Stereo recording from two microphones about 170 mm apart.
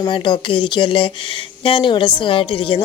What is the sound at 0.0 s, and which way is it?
A woman's voice, 30° left (ahead or behind).